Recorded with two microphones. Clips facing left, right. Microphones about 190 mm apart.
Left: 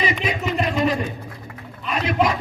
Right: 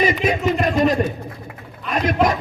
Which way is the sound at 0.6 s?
45° right (ahead or behind).